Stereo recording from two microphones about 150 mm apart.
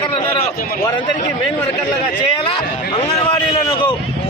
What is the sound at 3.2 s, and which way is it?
Speech, 30° left (ahead or behind).